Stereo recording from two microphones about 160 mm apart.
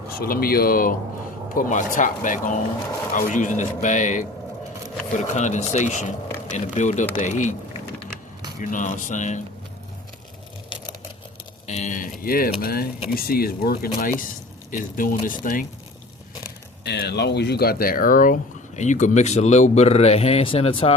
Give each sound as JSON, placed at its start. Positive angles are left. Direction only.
{"t": 0.2, "sound": "a man's voice", "side_deg": 70}
{"t": 8.7, "sound": "a man's voice", "side_deg": 55}
{"t": 11.7, "sound": "a man's voice", "side_deg": 50}
{"t": 12.2, "sound": "speech", "side_deg": 65}
{"t": 16.8, "sound": "speech", "side_deg": 90}
{"t": 18.8, "sound": "a man's voice", "side_deg": 50}